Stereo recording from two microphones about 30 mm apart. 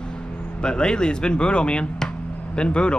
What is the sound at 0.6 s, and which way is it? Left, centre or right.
Speech, left.